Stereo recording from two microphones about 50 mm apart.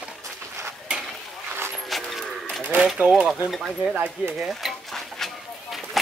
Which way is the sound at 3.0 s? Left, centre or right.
Right.